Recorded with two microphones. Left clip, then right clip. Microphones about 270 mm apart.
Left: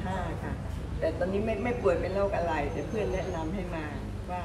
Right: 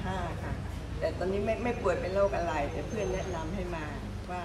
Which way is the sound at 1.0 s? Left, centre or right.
Centre.